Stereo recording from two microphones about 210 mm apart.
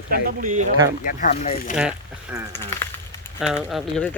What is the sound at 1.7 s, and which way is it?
Speech, 5° right (ahead or behind).